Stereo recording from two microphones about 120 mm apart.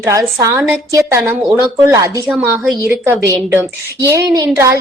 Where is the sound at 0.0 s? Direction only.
25° right (ahead or behind).